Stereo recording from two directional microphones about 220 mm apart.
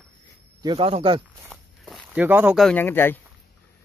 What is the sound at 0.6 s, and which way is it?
Speech, 20° right (ahead or behind).